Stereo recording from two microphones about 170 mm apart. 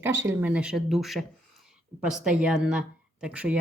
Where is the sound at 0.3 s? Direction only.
10° right (ahead or behind).